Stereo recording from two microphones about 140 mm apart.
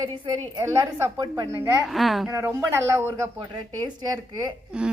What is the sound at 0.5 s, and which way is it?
A woman's voice, 25° right (ahead or behind).